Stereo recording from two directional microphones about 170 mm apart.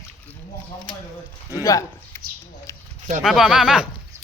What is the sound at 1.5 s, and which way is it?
Speech, 15° left (ahead or behind).